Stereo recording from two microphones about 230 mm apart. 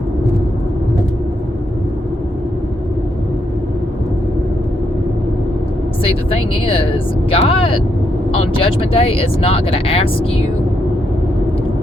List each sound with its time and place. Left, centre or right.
6.7 s speech: left